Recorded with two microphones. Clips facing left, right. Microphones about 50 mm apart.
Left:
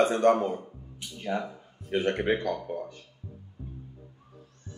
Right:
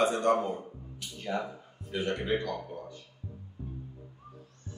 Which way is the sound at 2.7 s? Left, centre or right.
Left.